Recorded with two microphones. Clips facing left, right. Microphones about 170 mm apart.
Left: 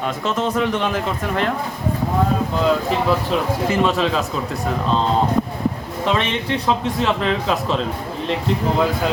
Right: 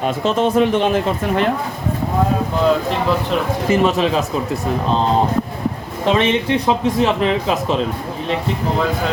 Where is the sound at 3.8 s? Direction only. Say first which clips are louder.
Right 3 dB; 15° right (ahead or behind).